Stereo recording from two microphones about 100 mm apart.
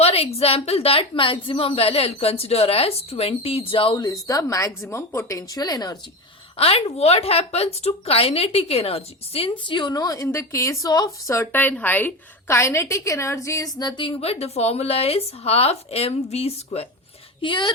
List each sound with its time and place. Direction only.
0.0 s a woman's voice: 80° left; by 3.9 s 65° left (ahead or behind)
3.9 s a woman's voice: 35° left (ahead or behind)
6.6 s a woman's voice: 85° left
9.5 s a woman's voice: 50° left (ahead or behind)
9.9 s a woman's voice: 35° left (ahead or behind)
11.5 s a woman's voice: 20° left (ahead or behind); by 14.0 s 40° left (ahead or behind)
14.2 s a woman's voice: 90° left
17.4 s a woman's voice: 50° left (ahead or behind)